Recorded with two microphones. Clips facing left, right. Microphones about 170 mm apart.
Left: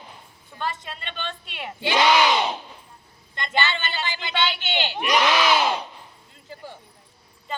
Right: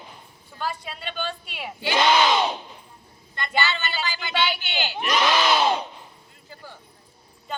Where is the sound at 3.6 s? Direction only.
25° left (ahead or behind).